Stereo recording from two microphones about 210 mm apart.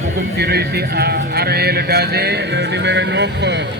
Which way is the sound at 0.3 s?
50° right (ahead or behind).